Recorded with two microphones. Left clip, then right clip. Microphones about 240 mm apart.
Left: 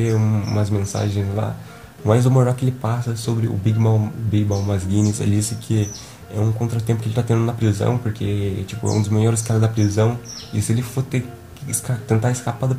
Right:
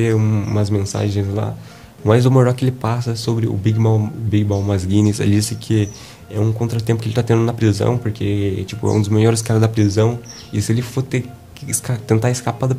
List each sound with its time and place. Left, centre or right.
0.0 s a man's voice: right
6.3 s speech: right